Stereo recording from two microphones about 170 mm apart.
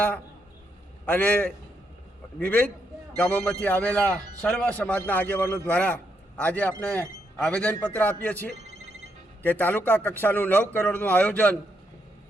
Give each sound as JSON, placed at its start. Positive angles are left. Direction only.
{"t": 1.0, "sound": "a man's voice", "side_deg": 10}